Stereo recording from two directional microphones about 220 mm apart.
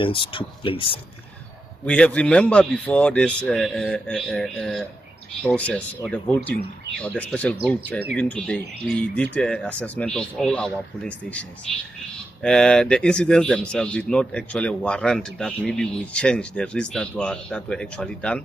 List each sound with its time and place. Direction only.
0.0 s speech: 25° left (ahead or behind)
1.9 s speech: 5° left (ahead or behind)